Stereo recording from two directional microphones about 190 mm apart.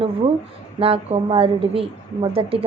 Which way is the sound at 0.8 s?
30° right (ahead or behind).